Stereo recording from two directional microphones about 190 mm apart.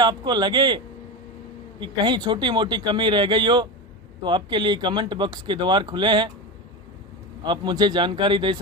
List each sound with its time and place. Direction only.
0.0 s speech: 20° right (ahead or behind)
1.8 s speech: 25° right (ahead or behind)
7.4 s speech: 25° right (ahead or behind)